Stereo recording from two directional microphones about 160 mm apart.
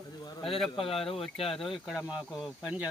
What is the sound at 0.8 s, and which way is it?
Speech, 35° left (ahead or behind).